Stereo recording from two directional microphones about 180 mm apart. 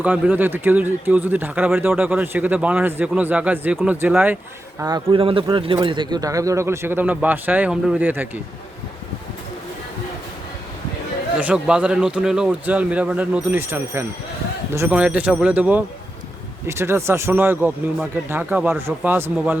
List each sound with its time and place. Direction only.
0.0 s a man's voice: 10° right (ahead or behind)
11.3 s a man's voice: 5° right (ahead or behind)